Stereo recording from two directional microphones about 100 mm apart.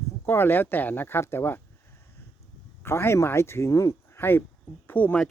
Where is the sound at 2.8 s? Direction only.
25° left (ahead or behind).